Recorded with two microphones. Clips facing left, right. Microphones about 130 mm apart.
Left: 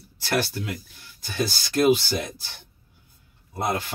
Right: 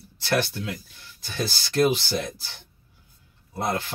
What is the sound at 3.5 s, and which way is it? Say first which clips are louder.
Speech: left 1 dB; 15° left (ahead or behind).